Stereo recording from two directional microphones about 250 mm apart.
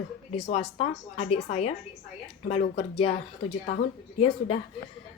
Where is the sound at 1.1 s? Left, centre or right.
Left.